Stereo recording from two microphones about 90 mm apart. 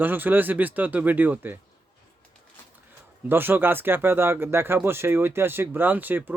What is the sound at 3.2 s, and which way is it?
Speech, 25° right (ahead or behind).